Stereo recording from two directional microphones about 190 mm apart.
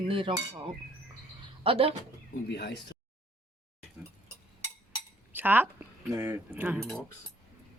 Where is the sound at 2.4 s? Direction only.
60° left (ahead or behind).